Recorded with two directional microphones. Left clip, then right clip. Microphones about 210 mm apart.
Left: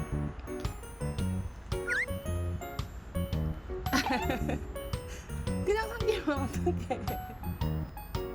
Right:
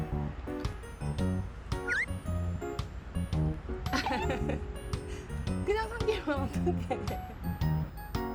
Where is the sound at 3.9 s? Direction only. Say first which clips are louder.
Left 3 dB; centre (ahead or behind).